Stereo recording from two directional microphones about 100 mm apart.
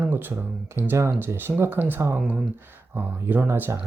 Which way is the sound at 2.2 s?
10° right (ahead or behind).